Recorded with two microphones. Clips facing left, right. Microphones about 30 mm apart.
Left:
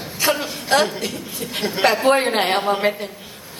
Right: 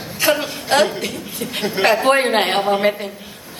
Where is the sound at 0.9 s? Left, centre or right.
Centre.